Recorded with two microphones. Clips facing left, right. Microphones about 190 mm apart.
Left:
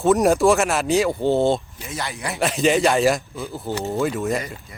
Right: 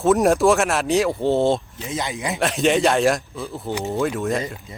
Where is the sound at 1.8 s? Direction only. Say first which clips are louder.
Right 3 dB; 15° right (ahead or behind).